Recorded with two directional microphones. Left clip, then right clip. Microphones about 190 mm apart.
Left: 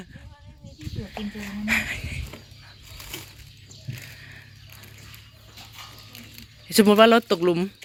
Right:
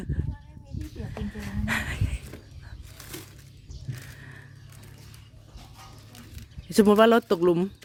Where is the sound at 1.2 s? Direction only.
30° right (ahead or behind).